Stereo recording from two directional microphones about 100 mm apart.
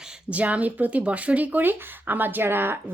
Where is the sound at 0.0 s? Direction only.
10° right (ahead or behind).